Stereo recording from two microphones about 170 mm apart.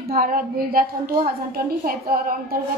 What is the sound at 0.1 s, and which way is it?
A woman's voice, 60° right (ahead or behind).